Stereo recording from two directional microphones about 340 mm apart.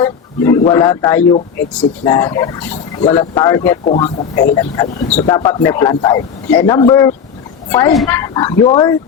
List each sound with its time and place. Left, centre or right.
0.0 s speech: centre